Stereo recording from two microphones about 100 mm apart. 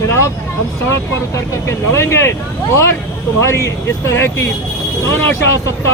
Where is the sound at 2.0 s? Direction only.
25° left (ahead or behind).